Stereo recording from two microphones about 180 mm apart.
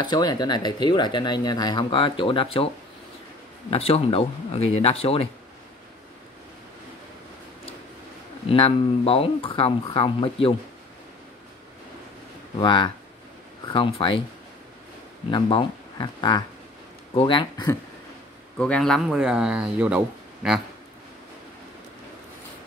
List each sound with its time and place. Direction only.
0.0 s speech: 25° left (ahead or behind)
3.7 s speech: 30° left (ahead or behind)
8.5 s speech: 30° left (ahead or behind)
12.5 s speech: 25° left (ahead or behind)
15.3 s speech: 25° left (ahead or behind)
18.6 s speech: 5° left (ahead or behind)